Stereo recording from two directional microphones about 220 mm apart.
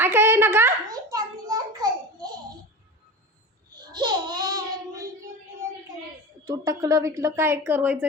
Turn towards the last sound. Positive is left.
turn(degrees=-10)  # may be behind; listen again after turning